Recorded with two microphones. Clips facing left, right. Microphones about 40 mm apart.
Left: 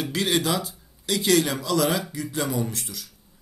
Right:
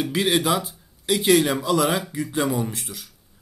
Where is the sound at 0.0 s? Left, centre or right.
Centre.